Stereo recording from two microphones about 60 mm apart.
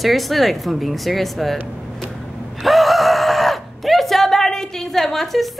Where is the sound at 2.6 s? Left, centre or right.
Centre.